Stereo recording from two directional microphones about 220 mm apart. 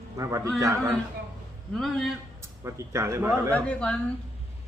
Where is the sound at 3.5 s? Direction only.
5° left (ahead or behind).